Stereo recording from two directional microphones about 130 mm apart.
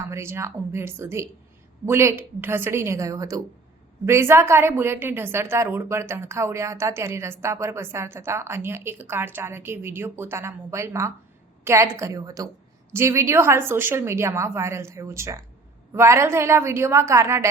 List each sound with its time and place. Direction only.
0.1 s a woman's voice: 20° right (ahead or behind)